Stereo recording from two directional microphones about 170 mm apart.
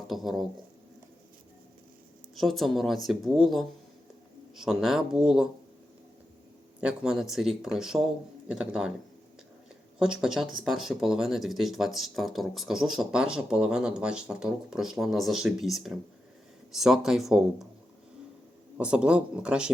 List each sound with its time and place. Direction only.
0.1 s speech: centre (ahead or behind)
2.3 s speech: centre (ahead or behind)
6.7 s speech: 5° right (ahead or behind)
10.0 s speech: 5° right (ahead or behind)
18.8 s speech: 5° right (ahead or behind)